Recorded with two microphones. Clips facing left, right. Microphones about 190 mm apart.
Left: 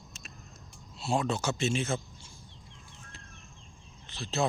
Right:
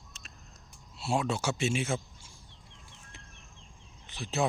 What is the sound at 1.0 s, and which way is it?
Speech, 10° right (ahead or behind).